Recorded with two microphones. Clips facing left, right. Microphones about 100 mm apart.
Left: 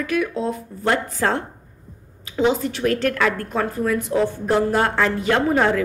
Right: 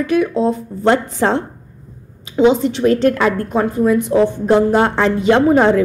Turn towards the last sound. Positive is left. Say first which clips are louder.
# right 7 dB
turn(degrees=-25)  # may be behind; listen again after turning